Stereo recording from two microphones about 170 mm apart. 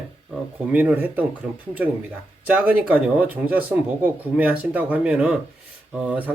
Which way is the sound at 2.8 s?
10° right (ahead or behind).